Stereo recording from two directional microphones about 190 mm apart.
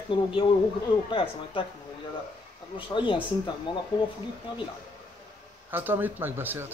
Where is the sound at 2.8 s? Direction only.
25° left (ahead or behind).